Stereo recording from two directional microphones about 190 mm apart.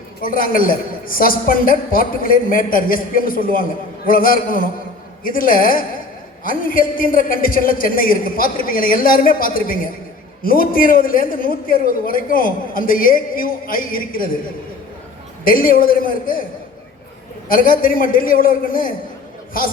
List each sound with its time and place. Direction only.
0.2 s a woman's voice: 45° left (ahead or behind)
15.4 s a woman's voice: 50° left (ahead or behind)
17.5 s a woman's voice: 50° left (ahead or behind)